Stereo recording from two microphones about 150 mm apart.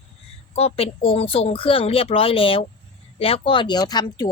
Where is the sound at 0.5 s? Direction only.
40° left (ahead or behind).